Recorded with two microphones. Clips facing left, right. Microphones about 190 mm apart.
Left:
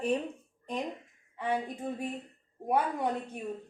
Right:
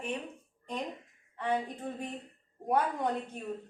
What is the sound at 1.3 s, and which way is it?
A woman's voice, 10° left (ahead or behind).